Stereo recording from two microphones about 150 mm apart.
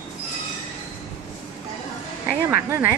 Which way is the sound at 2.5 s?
15° right (ahead or behind).